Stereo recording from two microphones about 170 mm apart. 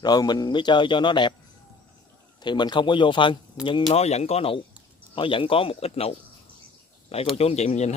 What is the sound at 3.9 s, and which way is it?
A man's voice, 40° left (ahead or behind).